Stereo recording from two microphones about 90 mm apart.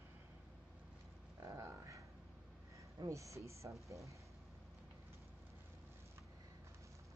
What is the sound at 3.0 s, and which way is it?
A woman's voice, 35° right (ahead or behind).